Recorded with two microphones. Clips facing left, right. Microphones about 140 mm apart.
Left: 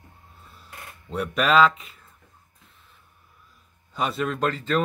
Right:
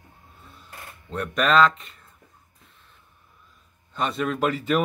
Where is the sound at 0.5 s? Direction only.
5° left (ahead or behind).